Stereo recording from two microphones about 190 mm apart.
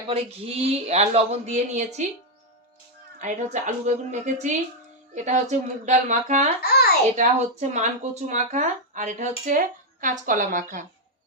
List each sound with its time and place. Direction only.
0.1 s speech: 30° right (ahead or behind)
3.2 s speech: 40° right (ahead or behind)
6.6 s a sound: 55° left (ahead or behind)
7.2 s a woman's voice: 40° right (ahead or behind)